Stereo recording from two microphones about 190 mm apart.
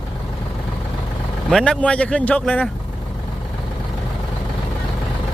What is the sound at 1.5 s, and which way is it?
Speech, centre (ahead or behind).